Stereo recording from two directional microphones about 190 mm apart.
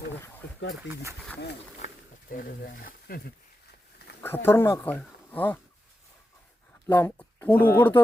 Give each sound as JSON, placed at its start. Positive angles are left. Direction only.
{"t": 0.8, "sound": "speech", "side_deg": -10}
{"t": 2.3, "sound": "speech", "side_deg": 50}
{"t": 4.2, "sound": "speech", "side_deg": 10}
{"t": 6.8, "sound": "speech", "side_deg": 10}